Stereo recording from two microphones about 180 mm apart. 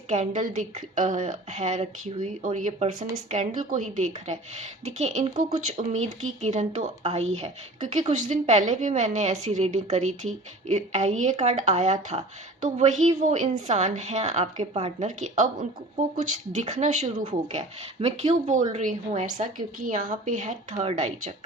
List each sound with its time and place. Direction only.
0.1 s a woman's voice: 40° right (ahead or behind)